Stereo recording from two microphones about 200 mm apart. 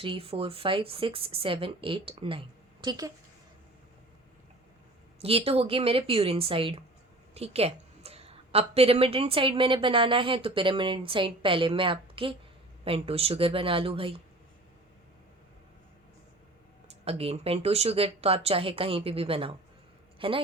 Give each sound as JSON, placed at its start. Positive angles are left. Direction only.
{"t": 0.0, "sound": "a woman's voice", "side_deg": -25}
{"t": 5.2, "sound": "a woman's voice", "side_deg": -30}
{"t": 17.1, "sound": "a woman's voice", "side_deg": -30}